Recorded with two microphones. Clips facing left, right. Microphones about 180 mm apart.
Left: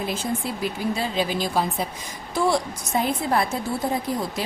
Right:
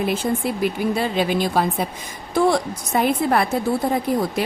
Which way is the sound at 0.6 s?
60° right (ahead or behind).